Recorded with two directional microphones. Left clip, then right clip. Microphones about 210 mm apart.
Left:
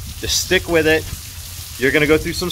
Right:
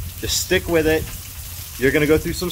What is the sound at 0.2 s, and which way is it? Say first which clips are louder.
Speech: left 3 dB; centre (ahead or behind).